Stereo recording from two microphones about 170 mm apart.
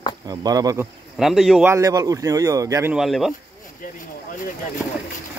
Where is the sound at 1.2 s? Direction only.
Centre (ahead or behind).